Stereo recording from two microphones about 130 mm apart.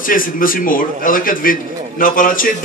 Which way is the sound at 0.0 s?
90° left.